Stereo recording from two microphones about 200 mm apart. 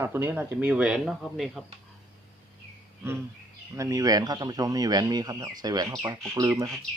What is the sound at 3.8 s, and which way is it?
Speech, 15° right (ahead or behind).